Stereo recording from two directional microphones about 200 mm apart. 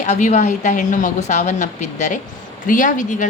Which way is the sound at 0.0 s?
35° left (ahead or behind).